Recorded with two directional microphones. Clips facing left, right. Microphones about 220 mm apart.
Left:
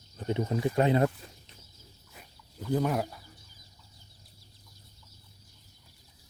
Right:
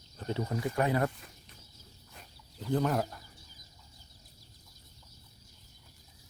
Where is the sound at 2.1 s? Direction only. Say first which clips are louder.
Left 2 dB; 5° left (ahead or behind).